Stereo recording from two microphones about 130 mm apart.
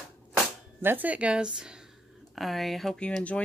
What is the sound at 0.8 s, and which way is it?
A woman's voice, 15° right (ahead or behind).